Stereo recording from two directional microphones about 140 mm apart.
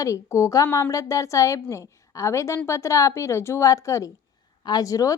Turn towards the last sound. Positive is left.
turn(degrees=25)  # may be behind; listen again after turning